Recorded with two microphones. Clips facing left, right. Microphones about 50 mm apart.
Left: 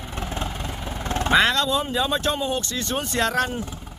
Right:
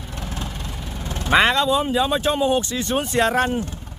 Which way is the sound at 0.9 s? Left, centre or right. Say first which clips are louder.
Left 6 dB; left.